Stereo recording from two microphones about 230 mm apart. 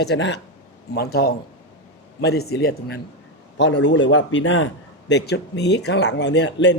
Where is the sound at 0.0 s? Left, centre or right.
Left.